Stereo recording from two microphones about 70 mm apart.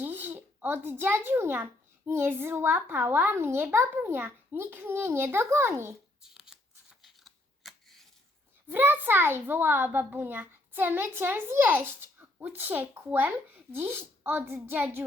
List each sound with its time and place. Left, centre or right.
0.0 s a child's voice: right
6.2 s shuffling cards: centre
8.6 s a child's voice: right